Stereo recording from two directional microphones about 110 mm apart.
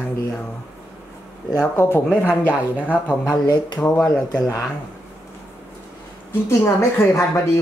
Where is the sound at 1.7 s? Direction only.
20° left (ahead or behind).